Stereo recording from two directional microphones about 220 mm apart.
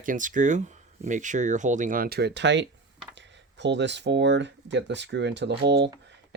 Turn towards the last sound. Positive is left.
turn(degrees=-50)  # may be behind; listen again after turning